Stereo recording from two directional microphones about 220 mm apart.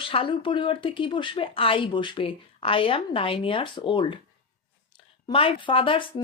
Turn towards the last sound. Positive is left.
turn(degrees=25)  # may be behind; listen again after turning